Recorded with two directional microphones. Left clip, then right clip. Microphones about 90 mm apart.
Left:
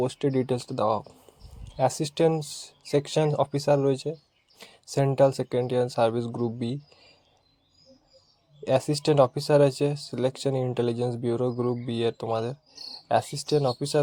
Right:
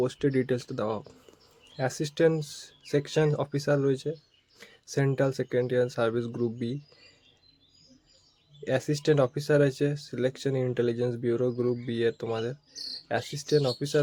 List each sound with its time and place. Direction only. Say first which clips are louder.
0.0 s speech: left 1 dB; 20° left (ahead or behind)
1.7 s speech: left 5 dB; 30° left (ahead or behind)
8.6 s speech: left 3 dB; 30° left (ahead or behind)